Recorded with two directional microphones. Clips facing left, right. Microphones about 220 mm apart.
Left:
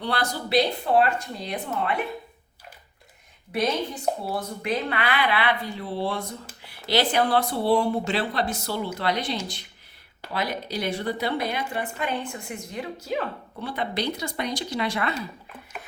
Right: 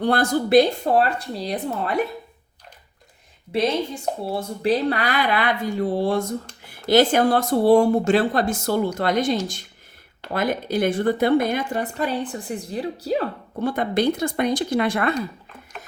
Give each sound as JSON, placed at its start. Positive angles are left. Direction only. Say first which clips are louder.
{"t": 0.0, "sound": "a woman's voice", "louder": "right 8 dB", "side_deg": -50}
{"t": 3.5, "sound": "a woman's voice", "louder": "right 4 dB", "side_deg": -30}